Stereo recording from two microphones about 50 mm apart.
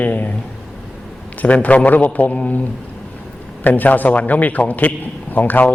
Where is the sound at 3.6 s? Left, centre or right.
Left.